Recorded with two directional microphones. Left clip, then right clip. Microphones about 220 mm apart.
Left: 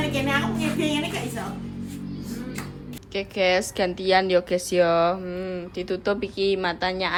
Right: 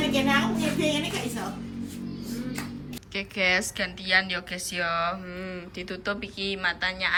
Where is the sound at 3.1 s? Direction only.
20° left (ahead or behind).